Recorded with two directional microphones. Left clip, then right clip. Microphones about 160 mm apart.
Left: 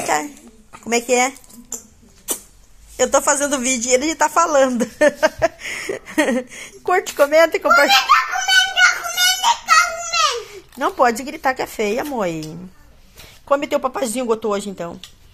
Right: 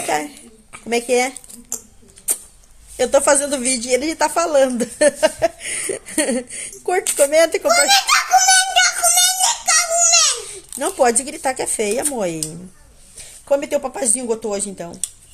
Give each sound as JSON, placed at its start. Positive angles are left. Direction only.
{"t": 0.0, "sound": "speech", "side_deg": -5}
{"t": 3.0, "sound": "speech", "side_deg": -10}
{"t": 7.9, "sound": "giggle", "side_deg": -45}
{"t": 9.1, "sound": "a sound", "side_deg": -45}
{"t": 10.5, "sound": "speech", "side_deg": -15}
{"t": 13.5, "sound": "speech", "side_deg": -5}